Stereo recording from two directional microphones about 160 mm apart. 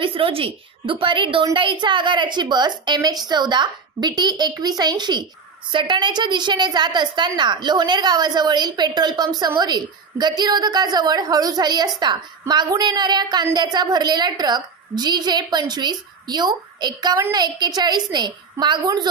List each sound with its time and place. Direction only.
0.0 s a woman's voice: 35° right (ahead or behind)